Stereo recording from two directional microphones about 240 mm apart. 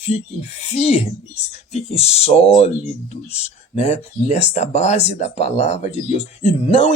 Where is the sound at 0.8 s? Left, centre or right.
Left.